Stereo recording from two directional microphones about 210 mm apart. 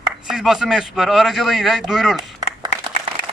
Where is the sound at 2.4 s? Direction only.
20° right (ahead or behind).